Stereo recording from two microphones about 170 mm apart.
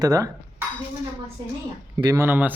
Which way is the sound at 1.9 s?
20° right (ahead or behind).